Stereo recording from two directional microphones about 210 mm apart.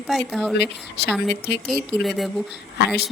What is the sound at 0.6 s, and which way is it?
Speech, 55° left (ahead or behind).